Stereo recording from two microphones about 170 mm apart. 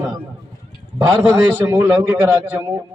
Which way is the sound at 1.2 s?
10° right (ahead or behind).